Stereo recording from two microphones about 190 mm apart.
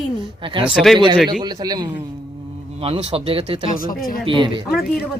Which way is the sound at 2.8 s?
30° right (ahead or behind).